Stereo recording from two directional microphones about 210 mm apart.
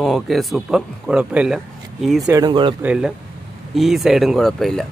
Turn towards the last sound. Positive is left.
turn(degrees=0)  # may be behind; listen again after turning